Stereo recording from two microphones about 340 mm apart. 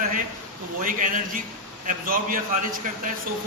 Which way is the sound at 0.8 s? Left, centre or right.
Right.